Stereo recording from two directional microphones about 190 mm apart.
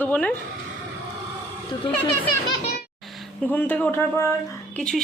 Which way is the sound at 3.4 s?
10° left (ahead or behind).